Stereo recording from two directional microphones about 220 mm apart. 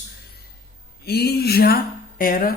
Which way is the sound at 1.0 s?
45° left (ahead or behind).